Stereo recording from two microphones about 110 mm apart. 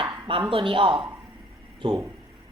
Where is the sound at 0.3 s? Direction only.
50° right (ahead or behind).